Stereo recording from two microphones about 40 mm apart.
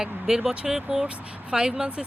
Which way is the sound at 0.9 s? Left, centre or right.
Centre.